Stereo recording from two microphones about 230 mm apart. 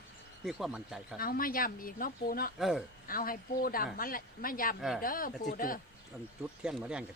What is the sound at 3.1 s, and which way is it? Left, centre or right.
Speech, left.